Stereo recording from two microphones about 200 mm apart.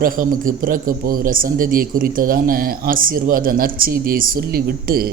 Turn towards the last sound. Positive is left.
turn(degrees=-50)  # may be behind; listen again after turning